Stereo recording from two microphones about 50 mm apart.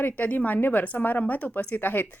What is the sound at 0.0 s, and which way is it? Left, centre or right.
A woman's voice, left.